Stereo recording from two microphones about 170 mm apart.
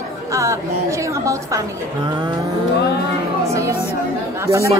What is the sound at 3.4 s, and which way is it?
Speech, 15° right (ahead or behind).